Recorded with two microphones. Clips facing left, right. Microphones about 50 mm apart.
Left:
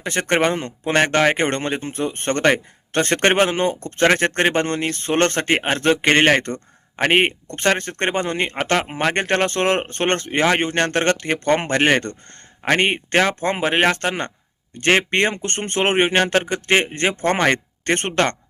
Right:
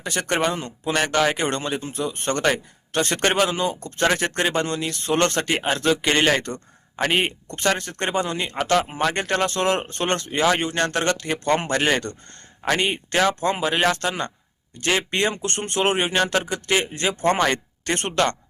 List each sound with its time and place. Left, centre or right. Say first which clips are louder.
0.0 s speech: left 4 dB; left